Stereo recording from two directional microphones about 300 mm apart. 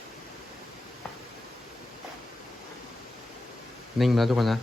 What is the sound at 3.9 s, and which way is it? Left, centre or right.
Speech, centre.